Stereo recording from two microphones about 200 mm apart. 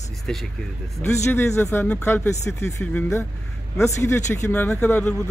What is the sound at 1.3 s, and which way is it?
Speech, 10° left (ahead or behind).